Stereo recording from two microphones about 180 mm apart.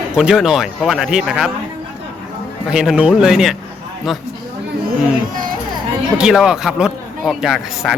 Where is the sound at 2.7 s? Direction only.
5° right (ahead or behind).